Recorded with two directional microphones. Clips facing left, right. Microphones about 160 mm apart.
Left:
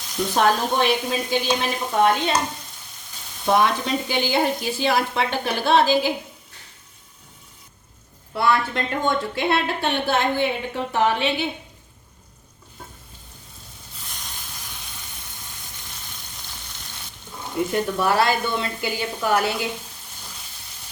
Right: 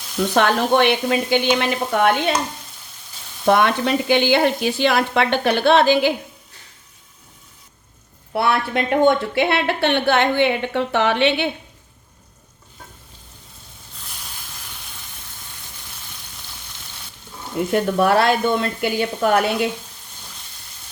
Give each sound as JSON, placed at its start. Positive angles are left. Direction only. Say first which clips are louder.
{"t": 0.3, "sound": "a woman's voice", "louder": "right 3 dB", "side_deg": -70}
{"t": 3.4, "sound": "a woman's voice", "louder": "right 3 dB", "side_deg": -65}
{"t": 8.3, "sound": "a woman's voice", "louder": "right 1 dB", "side_deg": -65}
{"t": 14.0, "sound": "a sound", "louder": "even", "side_deg": -5}
{"t": 17.7, "sound": "speech", "louder": "right 6 dB", "side_deg": -60}